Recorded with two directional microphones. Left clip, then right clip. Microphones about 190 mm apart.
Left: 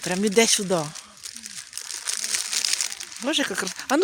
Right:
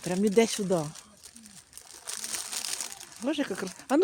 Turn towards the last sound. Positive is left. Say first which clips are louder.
# left 4 dB
turn(degrees=0)  # may be behind; listen again after turning